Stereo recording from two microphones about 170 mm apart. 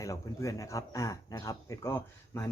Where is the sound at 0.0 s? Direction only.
20° left (ahead or behind).